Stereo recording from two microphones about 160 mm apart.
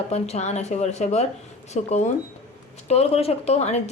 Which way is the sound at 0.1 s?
45° left (ahead or behind).